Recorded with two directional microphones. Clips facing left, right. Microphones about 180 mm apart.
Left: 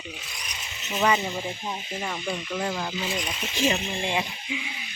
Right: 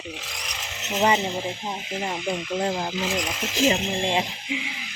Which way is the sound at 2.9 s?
90° right.